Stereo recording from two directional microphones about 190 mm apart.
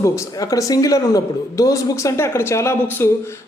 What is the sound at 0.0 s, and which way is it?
A man's voice, 15° left (ahead or behind).